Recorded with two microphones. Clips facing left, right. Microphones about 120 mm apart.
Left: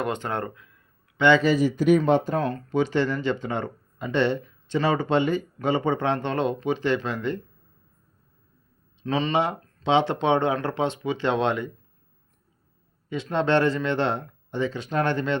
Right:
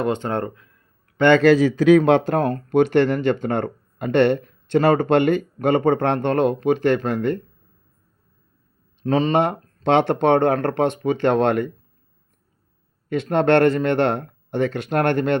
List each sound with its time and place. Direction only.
0.0 s speech: 30° right (ahead or behind)
1.1 s a man's voice: 50° right (ahead or behind)
1.4 s speech: 90° right
2.4 s speech: 50° right (ahead or behind)
9.0 s speech: 45° right (ahead or behind)
13.3 s speech: 60° right (ahead or behind)